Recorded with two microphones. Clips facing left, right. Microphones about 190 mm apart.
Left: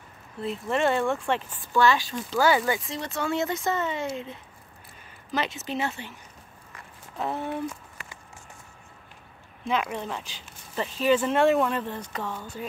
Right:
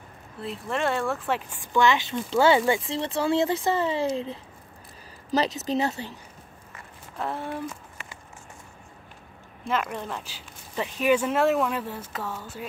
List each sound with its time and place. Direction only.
0.4 s speech: centre (ahead or behind); by 6.1 s 40° right (ahead or behind)
9.7 s speech: centre (ahead or behind)
10.3 s speech: 10° right (ahead or behind)